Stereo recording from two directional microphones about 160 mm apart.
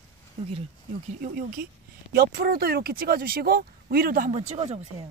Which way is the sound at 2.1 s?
70° right (ahead or behind).